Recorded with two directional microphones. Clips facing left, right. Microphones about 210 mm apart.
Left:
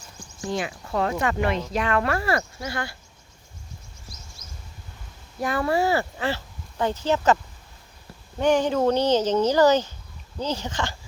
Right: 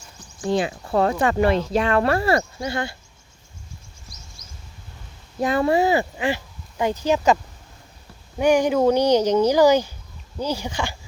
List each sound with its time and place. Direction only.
0.5 s speech: 30° right (ahead or behind)
5.4 s speech: 20° right (ahead or behind)
8.4 s speech: 10° right (ahead or behind)